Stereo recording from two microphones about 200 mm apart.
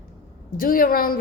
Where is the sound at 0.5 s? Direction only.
45° left (ahead or behind).